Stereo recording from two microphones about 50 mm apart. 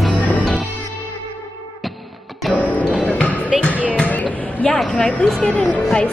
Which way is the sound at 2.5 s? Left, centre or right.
Left.